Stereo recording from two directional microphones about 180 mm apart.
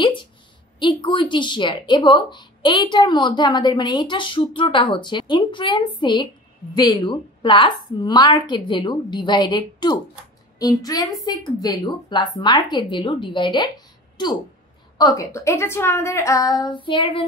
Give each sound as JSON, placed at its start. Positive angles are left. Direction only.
{"t": 0.0, "sound": "a woman's voice", "side_deg": 25}
{"t": 15.0, "sound": "a woman's voice", "side_deg": 20}